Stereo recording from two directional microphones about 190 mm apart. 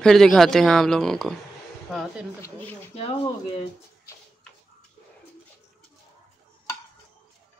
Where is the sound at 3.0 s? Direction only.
30° left (ahead or behind).